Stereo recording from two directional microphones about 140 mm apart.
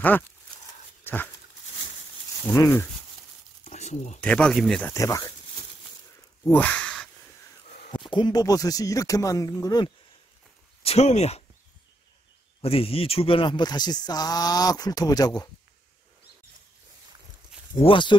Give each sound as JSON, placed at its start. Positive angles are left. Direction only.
{"t": 1.0, "sound": "dog", "side_deg": 15}
{"t": 2.4, "sound": "speech", "side_deg": 20}
{"t": 3.6, "sound": "a sound", "side_deg": 55}
{"t": 4.2, "sound": "speech", "side_deg": 5}
{"t": 4.9, "sound": "speech", "side_deg": 25}
{"t": 6.4, "sound": "speech", "side_deg": 10}
{"t": 7.9, "sound": "speech", "side_deg": 35}
{"t": 10.8, "sound": "speech", "side_deg": 50}
{"t": 12.6, "sound": "speech", "side_deg": 40}
{"t": 17.7, "sound": "speech", "side_deg": 35}